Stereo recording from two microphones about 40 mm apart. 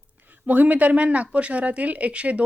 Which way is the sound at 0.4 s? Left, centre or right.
Right.